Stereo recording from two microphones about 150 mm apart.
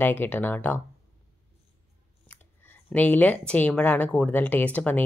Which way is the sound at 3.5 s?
10° left (ahead or behind).